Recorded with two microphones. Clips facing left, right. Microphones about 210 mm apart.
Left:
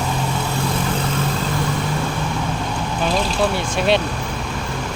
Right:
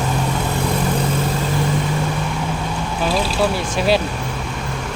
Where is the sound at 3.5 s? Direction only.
Centre (ahead or behind).